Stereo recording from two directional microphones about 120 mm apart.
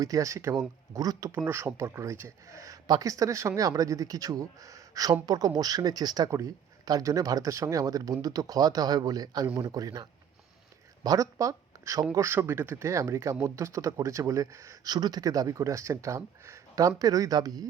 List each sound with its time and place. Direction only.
0.0 s speech: 30° right (ahead or behind)